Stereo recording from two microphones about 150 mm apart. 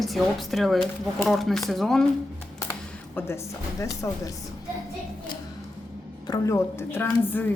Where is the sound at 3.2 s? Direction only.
15° left (ahead or behind).